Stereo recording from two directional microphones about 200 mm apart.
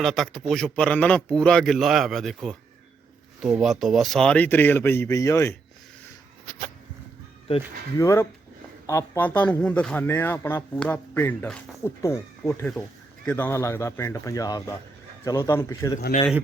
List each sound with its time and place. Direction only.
0.0 s a man's voice: centre (ahead or behind)
7.9 s a man's voice: 15° left (ahead or behind)